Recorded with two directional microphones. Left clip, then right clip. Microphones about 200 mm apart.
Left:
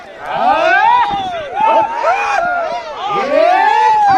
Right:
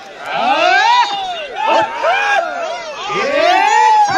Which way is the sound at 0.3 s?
45° left (ahead or behind).